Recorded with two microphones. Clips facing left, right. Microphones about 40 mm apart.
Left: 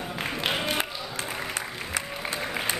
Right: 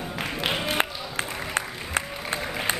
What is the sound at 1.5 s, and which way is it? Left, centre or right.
Applause, right.